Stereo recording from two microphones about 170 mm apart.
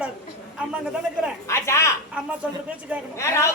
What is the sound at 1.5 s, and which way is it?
Speech, 15° left (ahead or behind).